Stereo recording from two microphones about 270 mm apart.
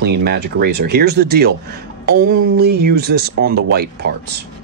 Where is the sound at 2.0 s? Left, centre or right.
Right.